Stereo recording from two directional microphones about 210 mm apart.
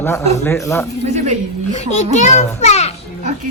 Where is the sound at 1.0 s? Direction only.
30° right (ahead or behind).